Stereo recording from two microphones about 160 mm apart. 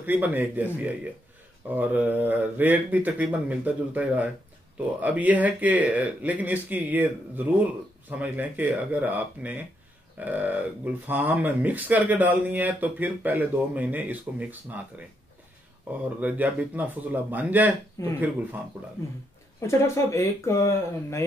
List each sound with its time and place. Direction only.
0.0 s speech: 10° right (ahead or behind)
18.0 s speech: 20° left (ahead or behind)
19.6 s speech: 15° left (ahead or behind)